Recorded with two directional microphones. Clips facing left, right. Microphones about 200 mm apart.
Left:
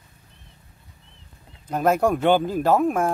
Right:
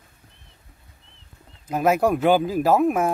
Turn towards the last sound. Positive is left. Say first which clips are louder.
# right 1 dB
turn(degrees=-5)  # may be behind; listen again after turning